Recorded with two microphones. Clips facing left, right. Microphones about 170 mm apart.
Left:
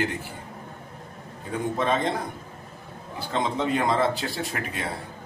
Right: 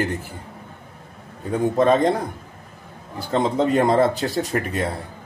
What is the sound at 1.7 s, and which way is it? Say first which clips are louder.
Speech: right 9 dB; 45° right (ahead or behind).